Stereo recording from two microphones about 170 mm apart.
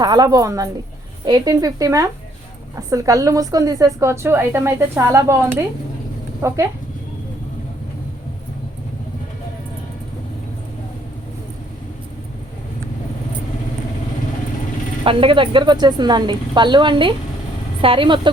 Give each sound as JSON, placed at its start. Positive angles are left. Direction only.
{"t": 0.0, "sound": "a woman's voice", "side_deg": -25}
{"t": 15.0, "sound": "a woman's voice", "side_deg": -30}